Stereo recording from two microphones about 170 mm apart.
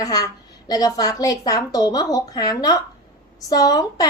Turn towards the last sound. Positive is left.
turn(degrees=20)  # may be behind; listen again after turning